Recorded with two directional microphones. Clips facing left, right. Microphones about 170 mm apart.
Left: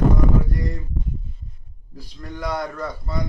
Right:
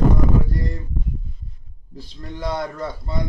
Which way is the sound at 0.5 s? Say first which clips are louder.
Even; 30° right (ahead or behind).